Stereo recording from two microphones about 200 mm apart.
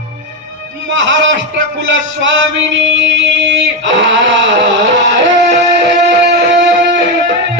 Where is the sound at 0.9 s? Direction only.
65° right (ahead or behind).